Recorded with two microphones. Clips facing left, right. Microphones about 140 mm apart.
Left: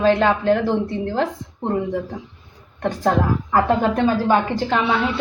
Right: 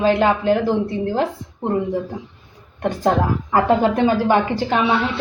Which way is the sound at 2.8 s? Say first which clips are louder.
Right 1 dB; 15° right (ahead or behind).